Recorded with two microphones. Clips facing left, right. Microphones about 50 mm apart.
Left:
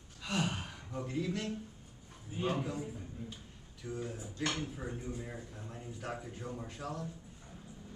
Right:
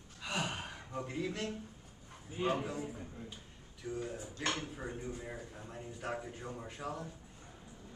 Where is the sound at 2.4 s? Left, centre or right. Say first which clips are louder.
Right 1 dB; centre.